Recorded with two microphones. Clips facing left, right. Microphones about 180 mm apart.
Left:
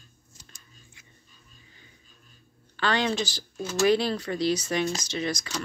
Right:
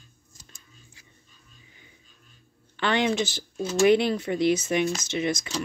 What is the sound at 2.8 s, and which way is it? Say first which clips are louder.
Speech: right 2 dB; 20° right (ahead or behind).